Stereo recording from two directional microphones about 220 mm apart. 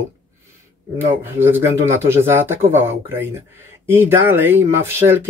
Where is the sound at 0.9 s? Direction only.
10° right (ahead or behind).